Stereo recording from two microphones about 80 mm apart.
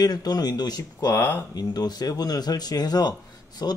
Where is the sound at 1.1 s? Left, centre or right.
Left.